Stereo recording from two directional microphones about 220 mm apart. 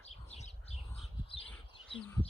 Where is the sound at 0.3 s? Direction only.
30° left (ahead or behind).